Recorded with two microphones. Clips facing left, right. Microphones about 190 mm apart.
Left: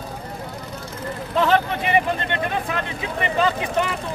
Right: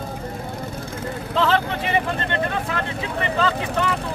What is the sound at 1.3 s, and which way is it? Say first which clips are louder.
Speech: left 2 dB; 15° left (ahead or behind).